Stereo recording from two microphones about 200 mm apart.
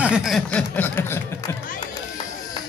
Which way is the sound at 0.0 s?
5° right (ahead or behind).